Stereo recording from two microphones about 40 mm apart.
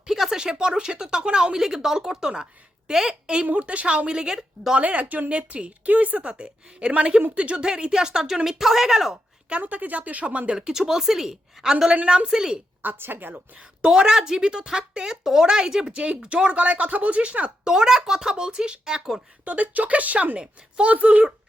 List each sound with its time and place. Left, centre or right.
0.0 s a sound: centre
0.3 s a woman's voice: right
3.5 s a woman's voice: right
4.8 s a woman's voice: right; by 9.1 s centre
9.5 s speech: right
10.5 s a woman's voice: centre
12.8 s a woman's voice: right
13.6 s a woman's voice: right
17.6 s speech: centre
19.5 s speech: right